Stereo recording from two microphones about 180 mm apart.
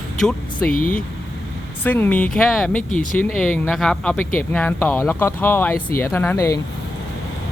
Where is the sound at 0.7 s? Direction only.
50° left (ahead or behind).